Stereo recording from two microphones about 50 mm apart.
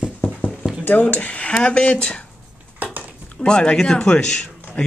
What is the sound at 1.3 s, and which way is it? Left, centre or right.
Speech, left.